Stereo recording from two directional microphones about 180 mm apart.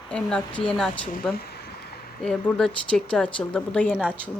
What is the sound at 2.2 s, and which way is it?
Speech, 5° left (ahead or behind).